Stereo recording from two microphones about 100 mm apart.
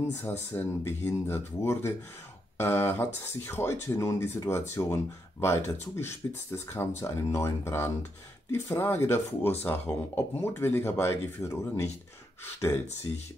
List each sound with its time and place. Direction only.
0.1 s speech: 25° left (ahead or behind)